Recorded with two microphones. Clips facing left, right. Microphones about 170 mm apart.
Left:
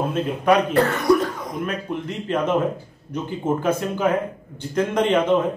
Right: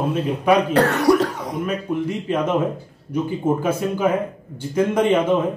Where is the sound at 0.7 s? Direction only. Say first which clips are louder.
Right 2 dB; 85° right.